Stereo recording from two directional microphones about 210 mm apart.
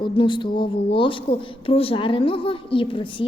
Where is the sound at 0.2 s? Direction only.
25° left (ahead or behind).